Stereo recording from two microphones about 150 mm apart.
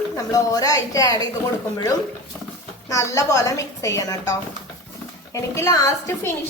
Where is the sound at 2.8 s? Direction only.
20° left (ahead or behind).